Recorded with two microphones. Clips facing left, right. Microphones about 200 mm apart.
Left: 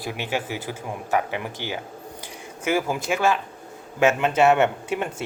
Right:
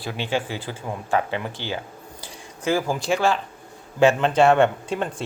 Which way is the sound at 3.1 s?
10° left (ahead or behind).